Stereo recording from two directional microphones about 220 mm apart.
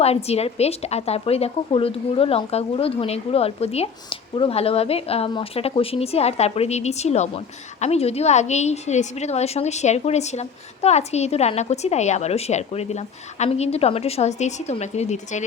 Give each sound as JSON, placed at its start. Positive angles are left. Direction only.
{"t": 0.0, "sound": "a woman's voice", "side_deg": 30}